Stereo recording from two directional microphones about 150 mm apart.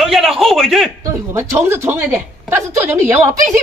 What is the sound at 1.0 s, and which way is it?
Speech, 20° right (ahead or behind).